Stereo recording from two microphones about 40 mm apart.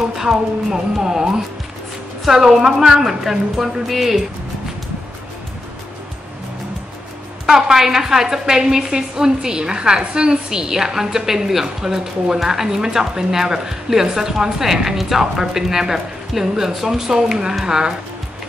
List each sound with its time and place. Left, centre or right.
0.2 s a woman's voice: centre
7.4 s a woman's voice: centre